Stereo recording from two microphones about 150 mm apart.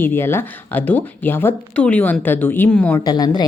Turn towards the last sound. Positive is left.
turn(degrees=25)  # may be behind; listen again after turning